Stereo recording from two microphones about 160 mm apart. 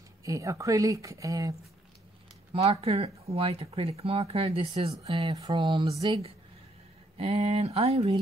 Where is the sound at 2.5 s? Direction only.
40° right (ahead or behind).